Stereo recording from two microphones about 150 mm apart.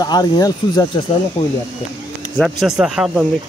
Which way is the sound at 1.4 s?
50° left (ahead or behind).